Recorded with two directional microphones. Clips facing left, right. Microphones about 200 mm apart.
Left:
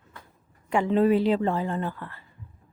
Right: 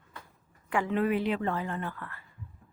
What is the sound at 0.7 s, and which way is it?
A woman's voice, 25° left (ahead or behind).